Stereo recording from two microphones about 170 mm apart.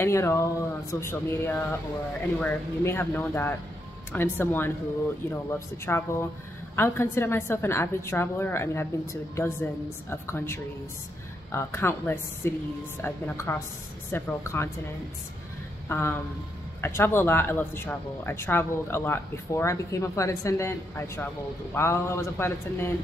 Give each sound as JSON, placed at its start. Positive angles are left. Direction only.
{"t": 0.0, "sound": "speech", "side_deg": 15}
{"t": 5.9, "sound": "speech", "side_deg": 15}
{"t": 15.9, "sound": "speech", "side_deg": 15}